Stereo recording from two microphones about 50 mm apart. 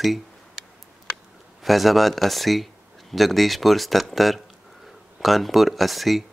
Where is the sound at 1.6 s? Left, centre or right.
Centre.